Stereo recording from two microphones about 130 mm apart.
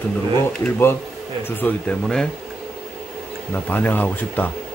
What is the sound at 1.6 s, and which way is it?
Speech, 5° left (ahead or behind).